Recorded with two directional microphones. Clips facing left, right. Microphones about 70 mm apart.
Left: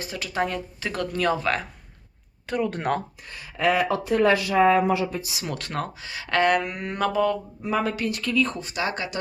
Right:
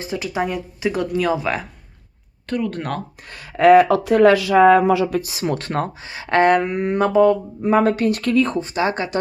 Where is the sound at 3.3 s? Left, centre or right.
Right.